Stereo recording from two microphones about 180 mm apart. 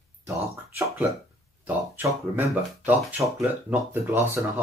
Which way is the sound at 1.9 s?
10° right (ahead or behind).